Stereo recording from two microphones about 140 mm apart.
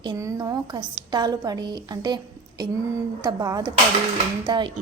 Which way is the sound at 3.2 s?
25° right (ahead or behind).